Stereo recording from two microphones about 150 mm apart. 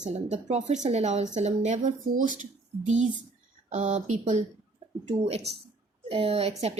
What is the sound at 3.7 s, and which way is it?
A woman's voice, 55° right (ahead or behind).